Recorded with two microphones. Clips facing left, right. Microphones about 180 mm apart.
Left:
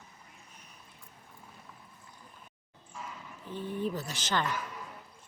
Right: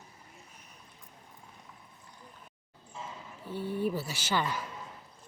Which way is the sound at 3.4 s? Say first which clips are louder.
Right 2 dB; 10° right (ahead or behind).